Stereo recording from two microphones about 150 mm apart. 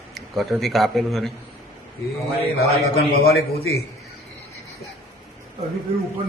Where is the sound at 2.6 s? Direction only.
90° left.